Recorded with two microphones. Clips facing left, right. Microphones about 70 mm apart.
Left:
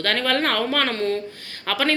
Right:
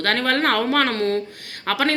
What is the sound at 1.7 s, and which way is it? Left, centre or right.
Speech, right.